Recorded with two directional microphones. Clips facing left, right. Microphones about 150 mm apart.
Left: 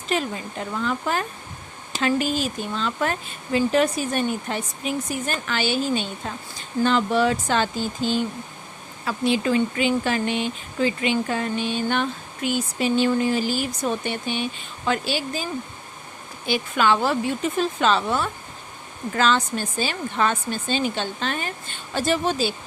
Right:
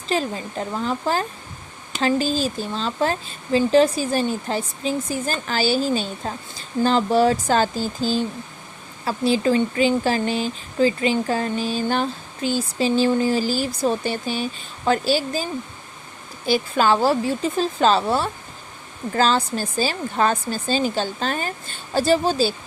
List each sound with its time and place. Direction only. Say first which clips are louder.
0.1 s speech: right 2 dB; 35° right (ahead or behind)
16.5 s speech: right 2 dB; 35° right (ahead or behind)